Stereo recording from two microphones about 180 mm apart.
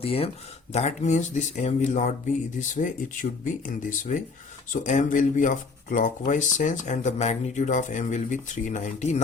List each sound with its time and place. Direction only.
0.0 s speech: 30° left (ahead or behind)